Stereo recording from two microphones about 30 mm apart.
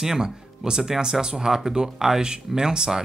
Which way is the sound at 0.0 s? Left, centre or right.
Right.